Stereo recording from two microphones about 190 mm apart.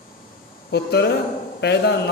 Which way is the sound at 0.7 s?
60° left (ahead or behind).